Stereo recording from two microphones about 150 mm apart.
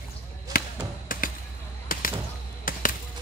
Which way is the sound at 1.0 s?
65° left (ahead or behind).